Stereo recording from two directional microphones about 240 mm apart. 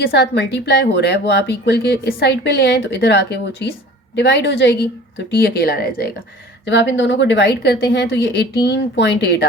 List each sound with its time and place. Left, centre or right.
0.0 s speech: left